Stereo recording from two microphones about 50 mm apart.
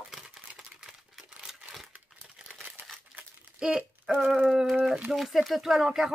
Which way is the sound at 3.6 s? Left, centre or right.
Centre.